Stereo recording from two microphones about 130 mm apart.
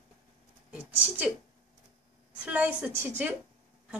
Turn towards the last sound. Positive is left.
turn(degrees=-15)  # may be behind; listen again after turning